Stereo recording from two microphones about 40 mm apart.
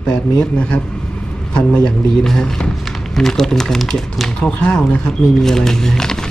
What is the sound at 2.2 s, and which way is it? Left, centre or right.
Speech, centre.